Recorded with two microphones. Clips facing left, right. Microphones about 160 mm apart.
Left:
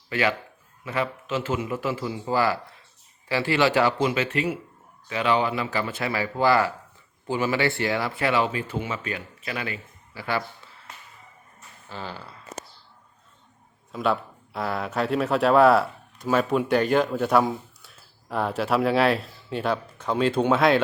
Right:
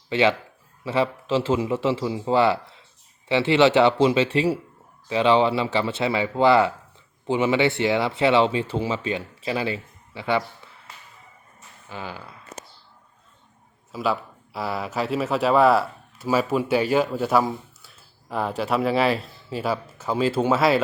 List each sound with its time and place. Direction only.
0.1 s speech: 25° right (ahead or behind)
11.9 s speech: 10° right (ahead or behind)
13.9 s speech: centre (ahead or behind)